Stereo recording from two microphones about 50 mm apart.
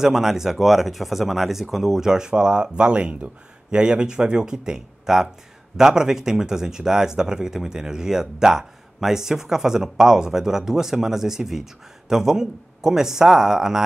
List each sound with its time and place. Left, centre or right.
0.0 s speech: centre